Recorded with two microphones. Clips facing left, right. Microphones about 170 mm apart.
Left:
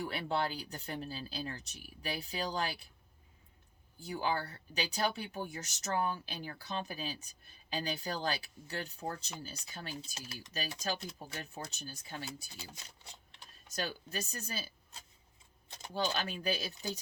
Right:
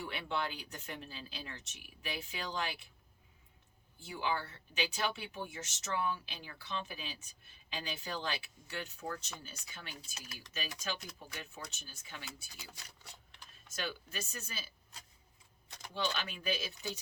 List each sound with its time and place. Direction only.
0.0 s speech: 35° left (ahead or behind)
4.0 s speech: 40° left (ahead or behind)
13.7 s speech: 40° left (ahead or behind)
16.0 s speech: 40° left (ahead or behind)